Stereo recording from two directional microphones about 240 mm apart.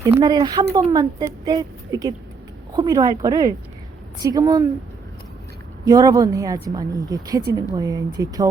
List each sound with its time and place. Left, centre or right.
0.0 s speech: centre
5.8 s speech: centre